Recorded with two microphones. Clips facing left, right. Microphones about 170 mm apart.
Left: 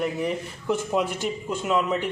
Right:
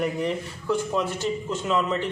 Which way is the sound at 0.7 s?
15° left (ahead or behind).